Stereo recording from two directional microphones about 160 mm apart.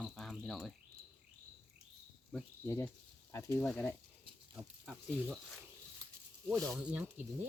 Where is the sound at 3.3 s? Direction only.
15° left (ahead or behind); by 5.1 s centre (ahead or behind).